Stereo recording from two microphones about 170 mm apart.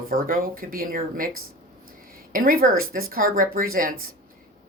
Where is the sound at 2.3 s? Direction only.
55° right (ahead or behind).